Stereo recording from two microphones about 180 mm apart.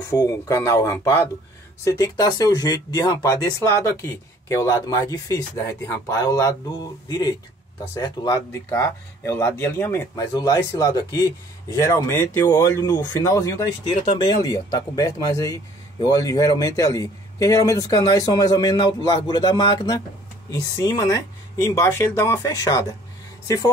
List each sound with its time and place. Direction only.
0.0 s speech: 20° left (ahead or behind)